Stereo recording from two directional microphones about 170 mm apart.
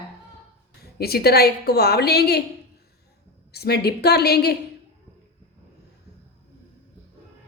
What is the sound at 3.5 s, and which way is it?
A woman's voice, 70° left (ahead or behind).